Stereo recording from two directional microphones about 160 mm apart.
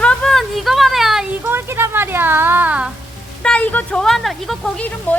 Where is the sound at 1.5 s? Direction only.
15° right (ahead or behind).